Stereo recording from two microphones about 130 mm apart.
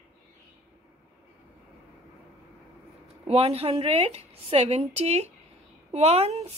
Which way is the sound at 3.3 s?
50° right (ahead or behind).